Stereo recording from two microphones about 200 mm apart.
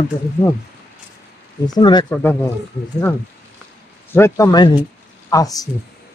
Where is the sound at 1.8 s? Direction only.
20° left (ahead or behind).